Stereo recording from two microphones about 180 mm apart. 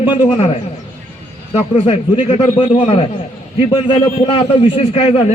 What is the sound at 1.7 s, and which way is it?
A man's voice, 30° left (ahead or behind).